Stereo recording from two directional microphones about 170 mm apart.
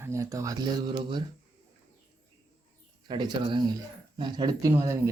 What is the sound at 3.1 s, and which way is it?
A man's voice, 25° right (ahead or behind).